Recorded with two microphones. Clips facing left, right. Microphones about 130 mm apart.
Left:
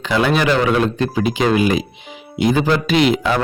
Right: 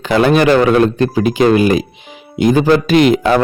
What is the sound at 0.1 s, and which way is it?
A man's voice, 50° right (ahead or behind).